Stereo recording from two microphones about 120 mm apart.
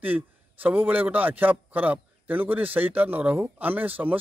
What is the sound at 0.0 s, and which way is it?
Speech, 15° right (ahead or behind).